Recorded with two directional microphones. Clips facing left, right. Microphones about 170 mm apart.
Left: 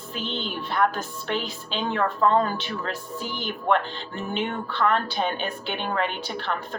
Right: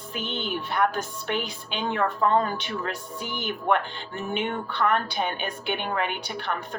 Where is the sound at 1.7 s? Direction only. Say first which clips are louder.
Left 1 dB; 10° right (ahead or behind).